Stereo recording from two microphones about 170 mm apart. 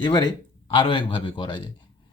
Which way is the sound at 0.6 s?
30° left (ahead or behind).